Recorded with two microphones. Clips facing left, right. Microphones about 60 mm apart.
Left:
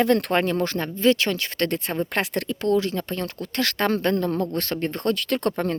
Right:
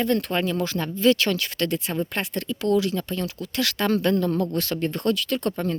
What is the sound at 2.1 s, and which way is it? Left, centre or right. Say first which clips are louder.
Speech: left 3 dB; left.